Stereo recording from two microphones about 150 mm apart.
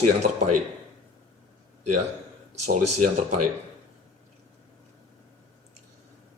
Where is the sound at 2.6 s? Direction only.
60° right (ahead or behind).